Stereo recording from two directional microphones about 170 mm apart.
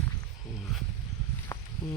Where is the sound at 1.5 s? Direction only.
15° left (ahead or behind).